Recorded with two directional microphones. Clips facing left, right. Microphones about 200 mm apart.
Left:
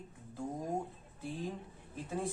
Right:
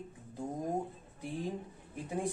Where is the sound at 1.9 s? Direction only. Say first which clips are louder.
Right 1 dB; 15° right (ahead or behind).